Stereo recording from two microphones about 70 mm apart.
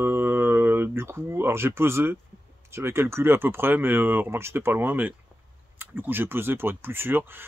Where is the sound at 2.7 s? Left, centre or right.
Right.